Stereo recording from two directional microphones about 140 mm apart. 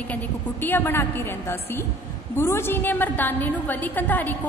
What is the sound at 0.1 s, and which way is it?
A woman's voice, 15° left (ahead or behind).